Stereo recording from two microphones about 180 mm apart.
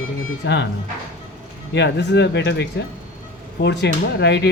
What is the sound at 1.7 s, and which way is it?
A man's voice, 75° left (ahead or behind).